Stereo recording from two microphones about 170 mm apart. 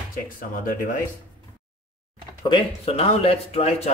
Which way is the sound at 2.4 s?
30° left (ahead or behind).